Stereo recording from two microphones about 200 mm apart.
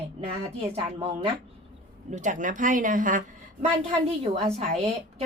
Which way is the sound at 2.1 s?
40° right (ahead or behind).